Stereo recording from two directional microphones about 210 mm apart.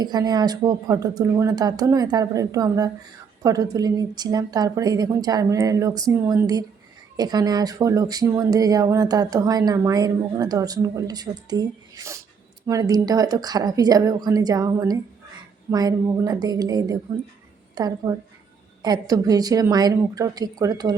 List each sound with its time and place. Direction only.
0.0 s speech: 20° right (ahead or behind)